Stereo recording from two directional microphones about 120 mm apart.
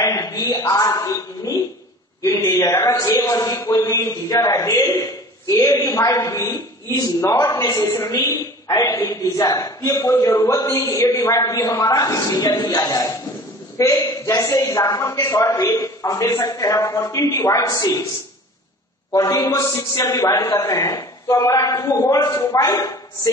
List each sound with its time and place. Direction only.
0.0 s a sound: 30° left (ahead or behind)
2.2 s a woman's voice: 25° left (ahead or behind)
19.1 s a woman's voice: 25° left (ahead or behind)